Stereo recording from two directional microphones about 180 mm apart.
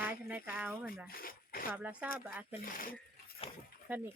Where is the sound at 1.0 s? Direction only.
55° left (ahead or behind).